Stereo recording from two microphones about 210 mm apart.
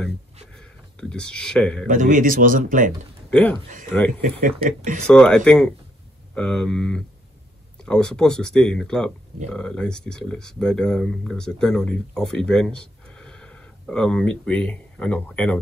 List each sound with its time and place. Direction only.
0.6 s speech: 5° left (ahead or behind)
1.9 s a man's voice: 40° right (ahead or behind)
3.3 s speech: 5° left (ahead or behind)
4.6 s a man's voice: 40° right (ahead or behind)
5.0 s speech: 5° left (ahead or behind)